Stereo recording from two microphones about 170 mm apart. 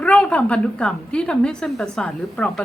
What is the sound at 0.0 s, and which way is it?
Speech, 5° left (ahead or behind).